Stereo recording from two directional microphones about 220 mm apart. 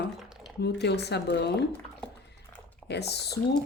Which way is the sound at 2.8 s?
50° left (ahead or behind).